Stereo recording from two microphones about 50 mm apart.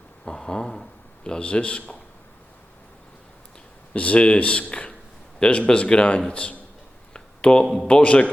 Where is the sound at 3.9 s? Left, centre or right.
Left.